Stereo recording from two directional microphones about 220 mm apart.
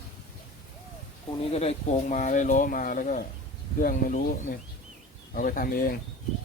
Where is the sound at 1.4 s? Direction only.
30° left (ahead or behind).